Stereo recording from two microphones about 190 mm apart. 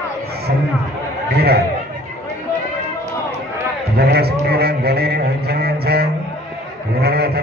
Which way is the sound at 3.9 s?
55° right (ahead or behind).